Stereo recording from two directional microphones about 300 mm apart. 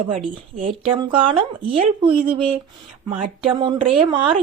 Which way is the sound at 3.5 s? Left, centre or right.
Centre.